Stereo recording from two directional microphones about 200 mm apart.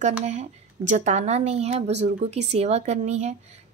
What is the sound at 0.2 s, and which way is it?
A woman's voice, 35° right (ahead or behind).